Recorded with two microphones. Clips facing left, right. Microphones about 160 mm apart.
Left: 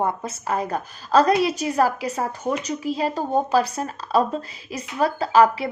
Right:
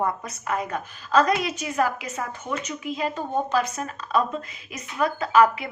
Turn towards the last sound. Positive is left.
turn(degrees=30)  # may be behind; listen again after turning